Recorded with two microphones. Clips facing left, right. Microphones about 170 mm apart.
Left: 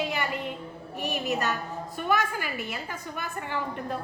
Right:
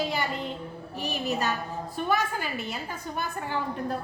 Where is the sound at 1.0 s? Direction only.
65° left (ahead or behind).